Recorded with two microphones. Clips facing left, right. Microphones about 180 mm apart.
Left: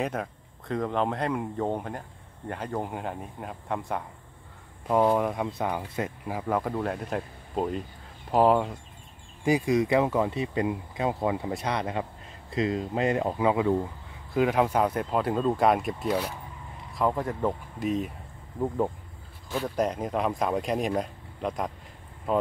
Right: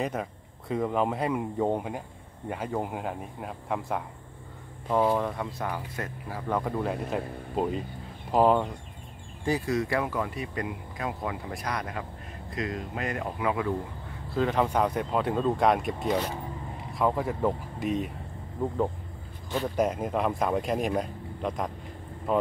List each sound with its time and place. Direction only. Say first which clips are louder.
0.0 s speech: left 1 dB; centre (ahead or behind); by 6.4 s 15° left (ahead or behind)
6.5 s speech: even; centre (ahead or behind)
9.4 s speech: left 4 dB; 15° left (ahead or behind)
14.3 s speech: left 2 dB; 10° left (ahead or behind)
19.8 s speech: even; 5° right (ahead or behind)